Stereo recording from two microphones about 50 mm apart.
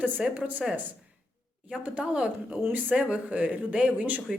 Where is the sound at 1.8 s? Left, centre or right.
Right.